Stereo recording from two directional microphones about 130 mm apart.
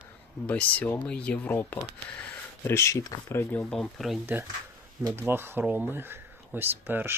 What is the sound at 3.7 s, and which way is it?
Speech, 5° left (ahead or behind).